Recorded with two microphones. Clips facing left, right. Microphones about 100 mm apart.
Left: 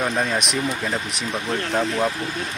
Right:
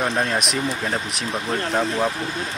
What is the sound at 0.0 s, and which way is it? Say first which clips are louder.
Speech: even; centre (ahead or behind).